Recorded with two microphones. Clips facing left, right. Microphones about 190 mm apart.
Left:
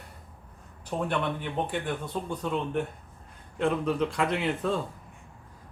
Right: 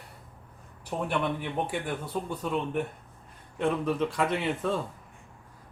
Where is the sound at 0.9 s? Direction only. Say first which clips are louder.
Even; 10° right (ahead or behind).